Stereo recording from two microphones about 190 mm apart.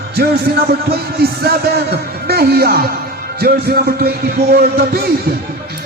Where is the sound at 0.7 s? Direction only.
55° right (ahead or behind).